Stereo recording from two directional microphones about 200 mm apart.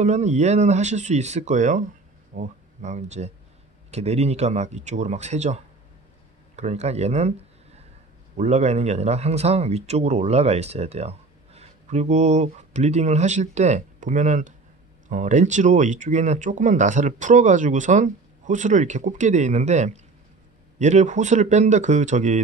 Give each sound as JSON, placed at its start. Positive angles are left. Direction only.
{"t": 0.0, "sound": "speech", "side_deg": -35}